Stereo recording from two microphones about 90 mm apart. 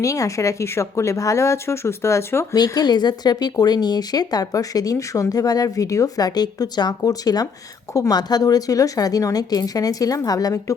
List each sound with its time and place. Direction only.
0.0 s speech: 40° left (ahead or behind)
2.6 s speech: 45° left (ahead or behind)